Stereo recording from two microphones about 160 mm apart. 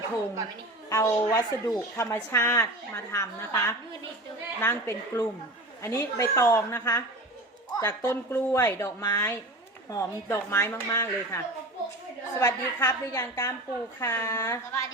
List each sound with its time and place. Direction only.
0.9 s a woman's voice: 20° left (ahead or behind)